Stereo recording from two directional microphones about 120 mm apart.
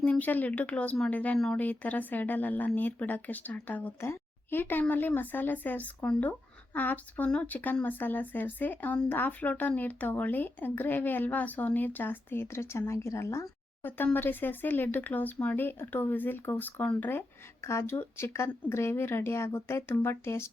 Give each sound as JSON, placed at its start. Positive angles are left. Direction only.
{"t": 0.0, "sound": "speech", "side_deg": 15}